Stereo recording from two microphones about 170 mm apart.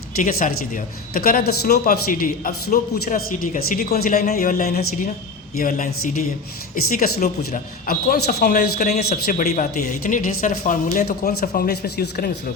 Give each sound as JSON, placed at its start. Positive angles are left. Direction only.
{"t": 0.2, "sound": "speech", "side_deg": 55}
{"t": 10.9, "sound": "speech", "side_deg": 65}